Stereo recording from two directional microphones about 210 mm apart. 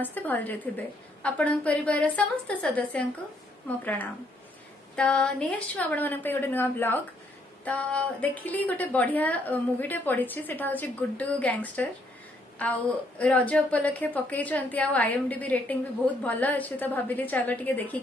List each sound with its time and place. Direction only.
0.0 s a woman's voice: 10° left (ahead or behind)